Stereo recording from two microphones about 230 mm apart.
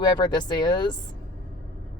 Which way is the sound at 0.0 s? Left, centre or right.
Centre.